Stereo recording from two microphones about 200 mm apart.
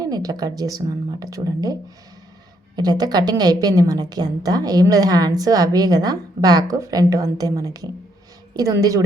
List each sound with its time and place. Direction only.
0.0 s a woman's voice: 20° right (ahead or behind)